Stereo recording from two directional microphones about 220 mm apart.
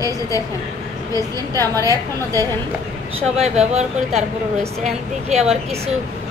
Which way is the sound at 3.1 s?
30° right (ahead or behind).